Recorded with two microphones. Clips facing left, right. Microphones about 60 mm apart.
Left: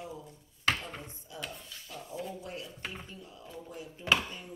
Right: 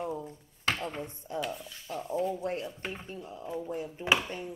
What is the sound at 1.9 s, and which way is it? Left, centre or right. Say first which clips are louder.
Speech: right 9 dB; right.